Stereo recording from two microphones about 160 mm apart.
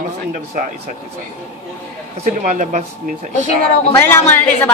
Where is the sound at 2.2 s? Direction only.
50° right (ahead or behind).